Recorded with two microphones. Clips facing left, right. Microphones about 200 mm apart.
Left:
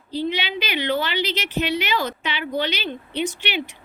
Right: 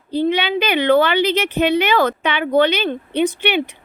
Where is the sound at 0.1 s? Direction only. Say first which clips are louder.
Right 7 dB; 55° right (ahead or behind).